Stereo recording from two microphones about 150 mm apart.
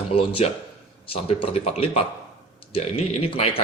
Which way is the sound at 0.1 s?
40° left (ahead or behind).